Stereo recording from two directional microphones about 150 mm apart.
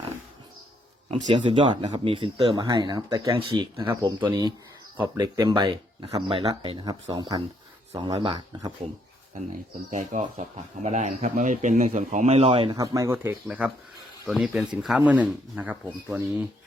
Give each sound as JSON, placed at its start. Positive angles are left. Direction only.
{"t": 1.3, "sound": "speech", "side_deg": -30}
{"t": 8.4, "sound": "speech", "side_deg": -25}
{"t": 9.9, "sound": "a man's voice", "side_deg": -55}
{"t": 12.7, "sound": "speech", "side_deg": -20}